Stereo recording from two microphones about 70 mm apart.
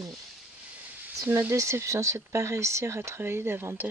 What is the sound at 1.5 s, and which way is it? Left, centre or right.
Speech, right.